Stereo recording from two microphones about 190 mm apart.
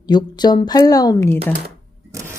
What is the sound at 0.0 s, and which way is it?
A woman's voice, 20° left (ahead or behind).